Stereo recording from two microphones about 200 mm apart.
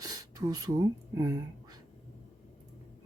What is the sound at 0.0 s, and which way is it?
Speech, 20° right (ahead or behind).